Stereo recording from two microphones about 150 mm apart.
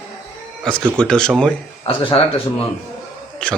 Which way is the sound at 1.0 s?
5° left (ahead or behind).